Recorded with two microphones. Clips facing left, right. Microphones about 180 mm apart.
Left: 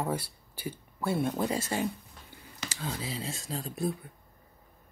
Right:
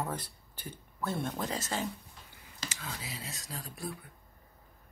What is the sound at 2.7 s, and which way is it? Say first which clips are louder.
Speech: left 10 dB; 30° left (ahead or behind).